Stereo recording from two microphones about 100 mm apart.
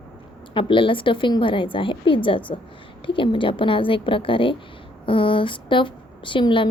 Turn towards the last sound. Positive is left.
turn(degrees=55)  # may be behind; listen again after turning